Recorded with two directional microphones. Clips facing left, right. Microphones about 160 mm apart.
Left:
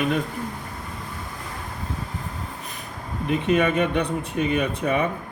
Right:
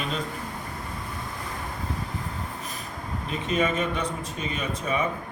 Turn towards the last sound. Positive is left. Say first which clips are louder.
# left 7 dB
turn(degrees=60)  # may be behind; listen again after turning